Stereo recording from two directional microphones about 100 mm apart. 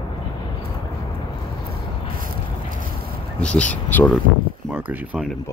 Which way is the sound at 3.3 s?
10° left (ahead or behind).